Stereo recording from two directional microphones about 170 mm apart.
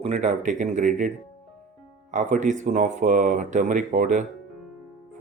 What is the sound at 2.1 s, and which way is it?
Speech, 45° right (ahead or behind).